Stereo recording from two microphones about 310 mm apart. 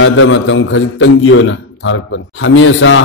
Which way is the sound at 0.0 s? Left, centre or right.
Left.